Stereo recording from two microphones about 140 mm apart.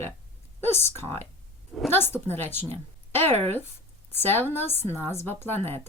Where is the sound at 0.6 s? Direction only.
15° left (ahead or behind).